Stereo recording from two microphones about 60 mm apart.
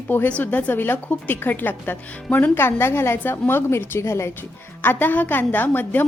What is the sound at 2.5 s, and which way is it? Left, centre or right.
A woman's voice, left.